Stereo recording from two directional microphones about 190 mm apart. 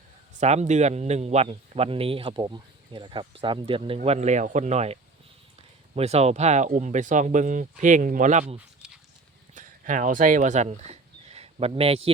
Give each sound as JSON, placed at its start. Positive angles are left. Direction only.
{"t": 0.3, "sound": "speech", "side_deg": -35}
{"t": 8.5, "sound": "a sound", "side_deg": -5}
{"t": 9.6, "sound": "speech", "side_deg": -40}